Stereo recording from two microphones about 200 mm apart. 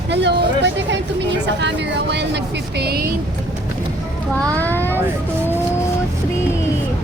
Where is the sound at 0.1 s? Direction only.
60° right (ahead or behind).